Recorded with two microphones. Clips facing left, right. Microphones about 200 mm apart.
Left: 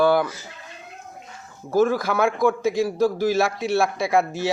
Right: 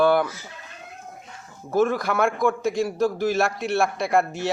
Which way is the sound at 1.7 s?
Centre (ahead or behind).